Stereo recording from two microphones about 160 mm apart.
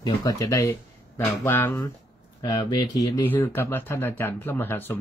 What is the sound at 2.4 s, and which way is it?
Speech, 25° left (ahead or behind).